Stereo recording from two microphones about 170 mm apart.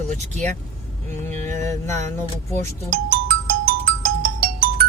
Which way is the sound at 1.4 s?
15° left (ahead or behind).